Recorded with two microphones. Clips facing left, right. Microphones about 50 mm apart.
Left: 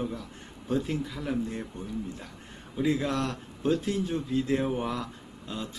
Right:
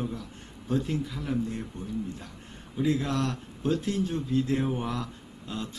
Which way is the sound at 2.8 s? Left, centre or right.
Centre.